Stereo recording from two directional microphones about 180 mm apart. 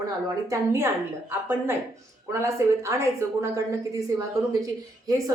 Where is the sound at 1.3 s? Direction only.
15° right (ahead or behind).